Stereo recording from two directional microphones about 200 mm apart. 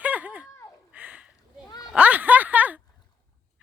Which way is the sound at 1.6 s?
20° left (ahead or behind).